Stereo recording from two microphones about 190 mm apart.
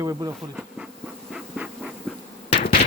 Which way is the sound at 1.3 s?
5° right (ahead or behind).